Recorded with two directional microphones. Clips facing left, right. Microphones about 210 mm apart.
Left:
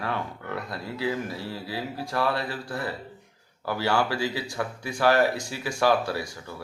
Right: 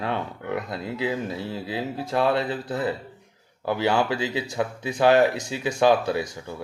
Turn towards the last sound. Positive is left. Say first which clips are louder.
# right 5 dB
turn(degrees=-20)  # may be behind; listen again after turning